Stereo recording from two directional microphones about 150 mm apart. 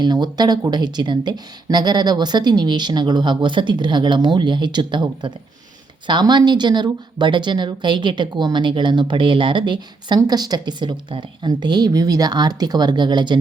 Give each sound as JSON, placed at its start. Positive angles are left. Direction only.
{"t": 0.0, "sound": "speech", "side_deg": -30}